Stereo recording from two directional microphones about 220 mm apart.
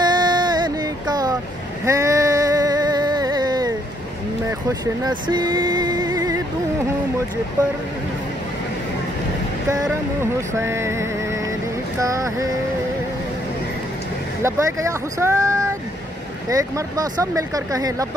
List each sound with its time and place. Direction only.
0.0 s a sound: 20° right (ahead or behind)
1.9 s music: 15° right (ahead or behind)
5.0 s music: 20° right (ahead or behind)
10.6 s music: 10° right (ahead or behind)
12.0 s speech: 15° right (ahead or behind)
14.4 s speech: 15° right (ahead or behind)